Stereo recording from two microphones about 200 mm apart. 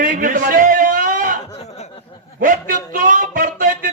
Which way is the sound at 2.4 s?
40° right (ahead or behind).